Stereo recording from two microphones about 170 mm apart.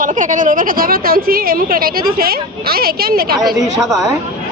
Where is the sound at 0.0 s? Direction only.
50° right (ahead or behind).